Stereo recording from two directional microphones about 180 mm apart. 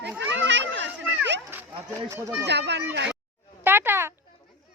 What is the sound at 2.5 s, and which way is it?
Speech, 70° right (ahead or behind).